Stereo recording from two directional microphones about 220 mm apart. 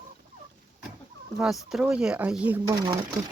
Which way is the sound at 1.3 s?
5° right (ahead or behind).